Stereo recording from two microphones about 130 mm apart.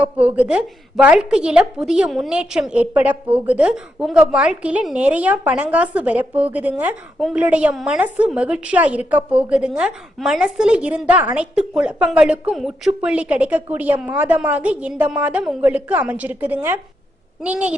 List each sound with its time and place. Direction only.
0.0 s a woman's voice: 10° right (ahead or behind)